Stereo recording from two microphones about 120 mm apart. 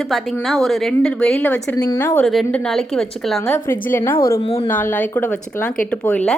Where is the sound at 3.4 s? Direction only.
20° left (ahead or behind).